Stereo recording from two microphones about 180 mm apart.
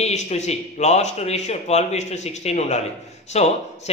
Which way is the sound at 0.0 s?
40° left (ahead or behind).